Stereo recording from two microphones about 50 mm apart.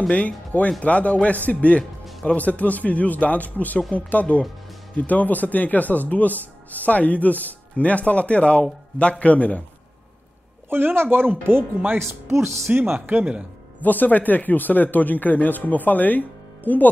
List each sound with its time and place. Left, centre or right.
0.1 s speech: left
10.7 s speech: right
12.3 s speech: right
13.2 s a man's voice: right
13.7 s speech: left